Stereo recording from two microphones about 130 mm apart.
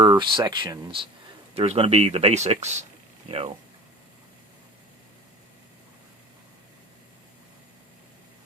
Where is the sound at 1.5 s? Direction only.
50° right (ahead or behind).